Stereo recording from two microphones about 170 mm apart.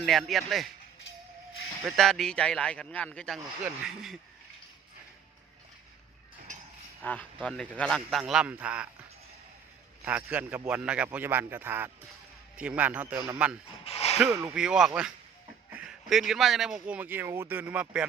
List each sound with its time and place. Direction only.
0.0 s a man's voice: centre (ahead or behind)
1.9 s a man's voice: centre (ahead or behind)
7.0 s a man's voice: 10° left (ahead or behind); by 8.9 s 5° right (ahead or behind)
10.0 s speech: 10° right (ahead or behind)
13.8 s a sound: 40° left (ahead or behind)
14.4 s a man's voice: 5° right (ahead or behind)